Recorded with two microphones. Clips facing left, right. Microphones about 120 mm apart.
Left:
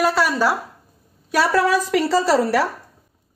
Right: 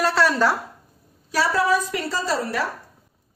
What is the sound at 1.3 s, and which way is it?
A woman's voice, 75° left (ahead or behind).